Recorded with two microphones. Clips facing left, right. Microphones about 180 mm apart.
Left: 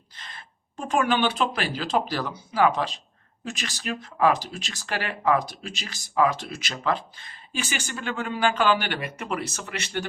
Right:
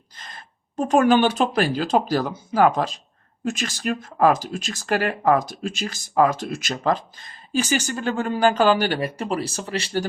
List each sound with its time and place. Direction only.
0.2 s speech: 45° right (ahead or behind)